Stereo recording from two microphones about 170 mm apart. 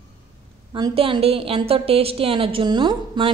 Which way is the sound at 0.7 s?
25° right (ahead or behind).